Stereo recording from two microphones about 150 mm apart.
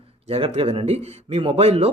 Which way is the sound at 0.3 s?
40° right (ahead or behind).